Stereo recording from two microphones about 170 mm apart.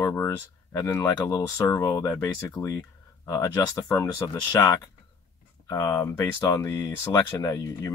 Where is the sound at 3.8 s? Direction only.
15° left (ahead or behind).